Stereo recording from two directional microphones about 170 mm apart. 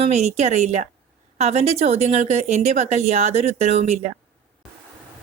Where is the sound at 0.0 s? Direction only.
40° right (ahead or behind).